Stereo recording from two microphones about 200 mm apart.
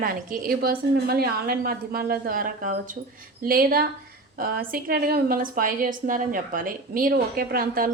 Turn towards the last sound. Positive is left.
turn(degrees=-45)  # may be behind; listen again after turning